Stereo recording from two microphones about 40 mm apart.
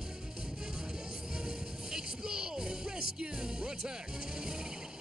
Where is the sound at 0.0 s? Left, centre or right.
Centre.